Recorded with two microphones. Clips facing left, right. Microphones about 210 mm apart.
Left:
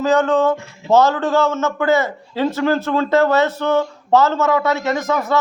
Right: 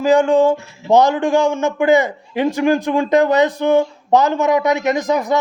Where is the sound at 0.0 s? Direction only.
10° right (ahead or behind).